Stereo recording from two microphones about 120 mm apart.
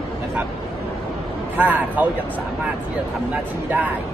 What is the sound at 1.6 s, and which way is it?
Speech, 15° right (ahead or behind).